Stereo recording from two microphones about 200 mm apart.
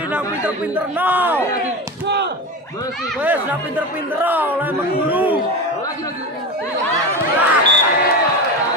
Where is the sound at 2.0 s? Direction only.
55° right (ahead or behind).